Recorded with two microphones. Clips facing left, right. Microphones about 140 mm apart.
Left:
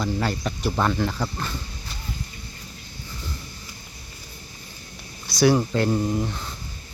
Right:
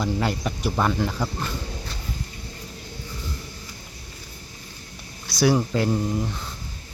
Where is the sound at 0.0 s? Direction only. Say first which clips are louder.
Right 1 dB; 15° right (ahead or behind).